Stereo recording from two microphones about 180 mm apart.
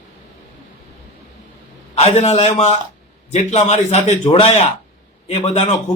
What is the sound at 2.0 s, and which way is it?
A man's voice, 35° left (ahead or behind).